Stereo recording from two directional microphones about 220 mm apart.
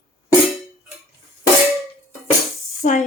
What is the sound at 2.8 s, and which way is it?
Speech, 35° left (ahead or behind).